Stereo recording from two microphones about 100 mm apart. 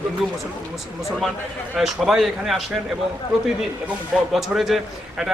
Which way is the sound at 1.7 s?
5° right (ahead or behind).